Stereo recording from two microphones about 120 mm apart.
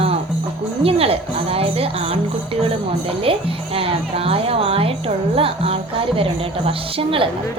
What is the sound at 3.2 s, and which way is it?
Speech, 50° right (ahead or behind).